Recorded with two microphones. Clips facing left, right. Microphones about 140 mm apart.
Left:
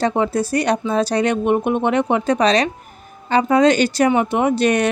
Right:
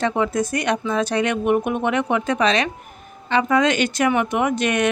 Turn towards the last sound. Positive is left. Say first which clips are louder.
# left 4 dB
turn(degrees=35)  # may be behind; listen again after turning